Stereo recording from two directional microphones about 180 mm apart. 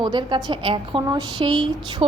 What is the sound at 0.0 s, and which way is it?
A woman's voice, 25° right (ahead or behind).